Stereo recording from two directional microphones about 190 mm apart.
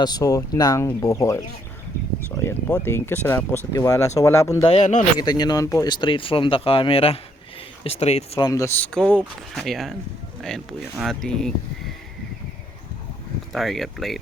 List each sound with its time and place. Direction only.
0.0 s speech: 20° left (ahead or behind)
2.4 s speech: 10° left (ahead or behind)
4.6 s speech: 30° left (ahead or behind)
5.2 s speech: 20° left (ahead or behind)
8.4 s speech: 15° left (ahead or behind)
8.9 s speech: 5° left (ahead or behind)
11.0 s speech: centre (ahead or behind)
13.5 s speech: centre (ahead or behind)